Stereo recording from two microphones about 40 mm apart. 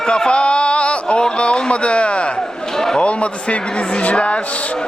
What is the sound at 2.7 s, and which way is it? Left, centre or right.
Speech, centre.